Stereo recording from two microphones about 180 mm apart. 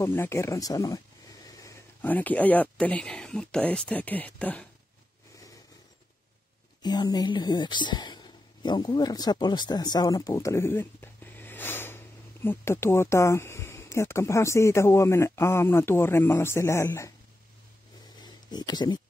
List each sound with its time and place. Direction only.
0.0 s speech: 15° left (ahead or behind)
6.8 s speech: 20° left (ahead or behind)
18.2 s a sound: 25° left (ahead or behind)